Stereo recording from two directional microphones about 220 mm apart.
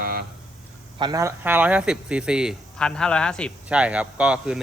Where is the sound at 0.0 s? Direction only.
45° right (ahead or behind).